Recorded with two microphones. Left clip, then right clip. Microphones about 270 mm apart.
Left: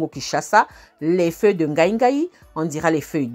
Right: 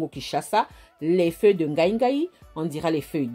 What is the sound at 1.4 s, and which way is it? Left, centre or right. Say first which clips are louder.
Speech: left 1 dB; left.